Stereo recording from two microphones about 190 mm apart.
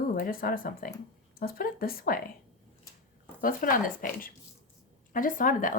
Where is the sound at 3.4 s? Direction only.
45° left (ahead or behind).